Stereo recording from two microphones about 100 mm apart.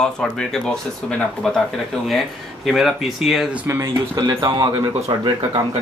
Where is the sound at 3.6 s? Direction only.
25° right (ahead or behind).